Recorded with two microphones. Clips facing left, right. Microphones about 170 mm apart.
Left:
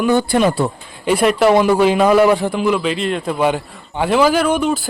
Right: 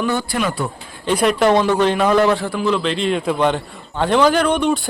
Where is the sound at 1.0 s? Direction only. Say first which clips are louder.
Left 2 dB; 5° left (ahead or behind).